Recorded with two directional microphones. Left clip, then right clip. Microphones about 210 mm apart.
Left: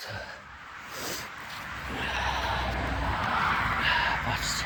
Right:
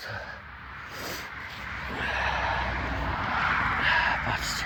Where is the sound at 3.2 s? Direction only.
45° left (ahead or behind).